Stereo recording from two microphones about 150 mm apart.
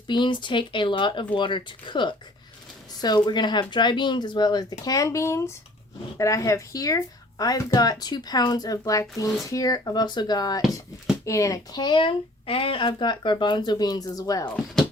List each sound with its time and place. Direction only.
0.1 s speech: 30° left (ahead or behind)
3.2 s a woman's voice: 30° left (ahead or behind)